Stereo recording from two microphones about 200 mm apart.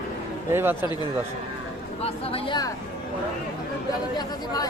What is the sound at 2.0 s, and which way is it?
Speech, 30° left (ahead or behind).